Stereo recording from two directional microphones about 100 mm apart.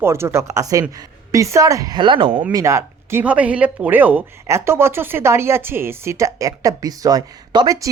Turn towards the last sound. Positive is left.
turn(degrees=-45)  # may be behind; listen again after turning